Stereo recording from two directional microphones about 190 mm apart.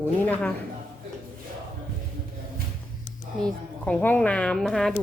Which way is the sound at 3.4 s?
5° left (ahead or behind).